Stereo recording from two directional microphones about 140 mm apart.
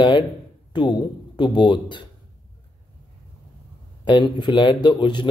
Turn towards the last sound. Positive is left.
turn(degrees=35)  # may be behind; listen again after turning